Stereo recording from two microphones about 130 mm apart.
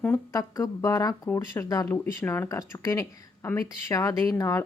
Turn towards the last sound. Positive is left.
turn(degrees=25)  # may be behind; listen again after turning